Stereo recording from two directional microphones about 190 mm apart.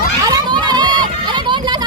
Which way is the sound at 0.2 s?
20° right (ahead or behind).